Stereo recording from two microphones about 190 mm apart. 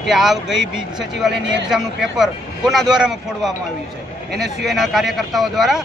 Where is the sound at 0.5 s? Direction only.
80° right.